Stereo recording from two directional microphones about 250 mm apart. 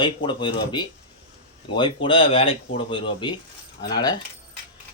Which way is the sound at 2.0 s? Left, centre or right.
Left.